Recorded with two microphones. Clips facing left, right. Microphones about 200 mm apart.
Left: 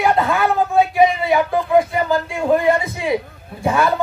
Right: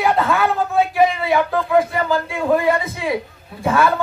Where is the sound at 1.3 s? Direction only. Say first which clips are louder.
Even; 15° left (ahead or behind).